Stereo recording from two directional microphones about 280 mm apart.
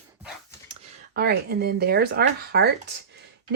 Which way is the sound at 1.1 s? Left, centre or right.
Right.